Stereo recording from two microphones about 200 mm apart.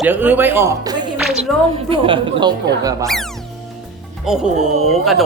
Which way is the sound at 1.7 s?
25° right (ahead or behind).